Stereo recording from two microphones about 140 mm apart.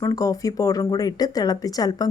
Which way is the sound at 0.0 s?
25° left (ahead or behind).